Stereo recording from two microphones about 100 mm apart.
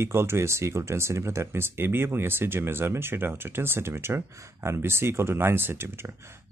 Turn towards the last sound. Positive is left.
turn(degrees=-25)  # may be behind; listen again after turning